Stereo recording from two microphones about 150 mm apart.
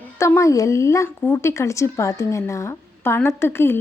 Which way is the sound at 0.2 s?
20° left (ahead or behind).